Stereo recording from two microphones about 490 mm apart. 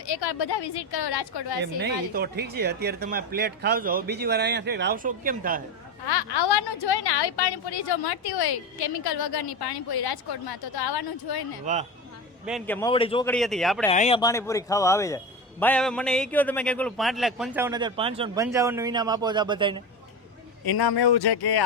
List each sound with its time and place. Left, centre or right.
0.0 s a woman's voice: left
1.6 s speech: centre
6.1 s a woman's voice: left
11.6 s speech: centre
12.5 s a man's voice: centre
13.9 s a man's voice: centre
20.7 s a woman's voice: left